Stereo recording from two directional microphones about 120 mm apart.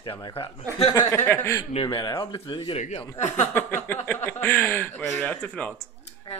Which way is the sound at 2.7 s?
70° left (ahead or behind).